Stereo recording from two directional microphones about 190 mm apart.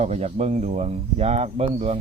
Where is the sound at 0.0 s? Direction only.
35° right (ahead or behind).